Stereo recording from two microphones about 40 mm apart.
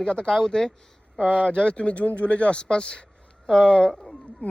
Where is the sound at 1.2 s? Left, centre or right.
Left.